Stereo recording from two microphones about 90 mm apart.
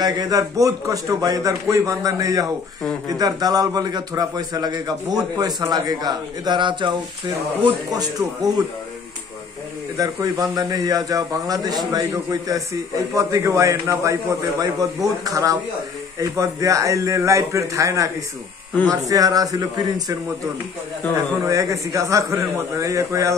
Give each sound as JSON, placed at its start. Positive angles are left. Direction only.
{"t": 0.0, "sound": "a man's voice", "side_deg": -45}
{"t": 7.9, "sound": "a man's voice", "side_deg": -45}
{"t": 9.9, "sound": "a man's voice", "side_deg": -45}
{"t": 21.5, "sound": "a man's voice", "side_deg": -35}